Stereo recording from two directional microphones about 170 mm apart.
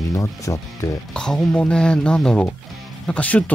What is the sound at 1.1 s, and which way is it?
Speech, 5° left (ahead or behind).